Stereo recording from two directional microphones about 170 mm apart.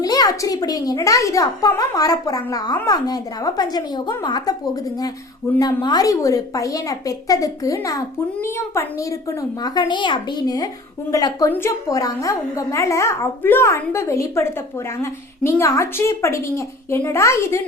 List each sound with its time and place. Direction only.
0.0 s a child's voice: 20° left (ahead or behind)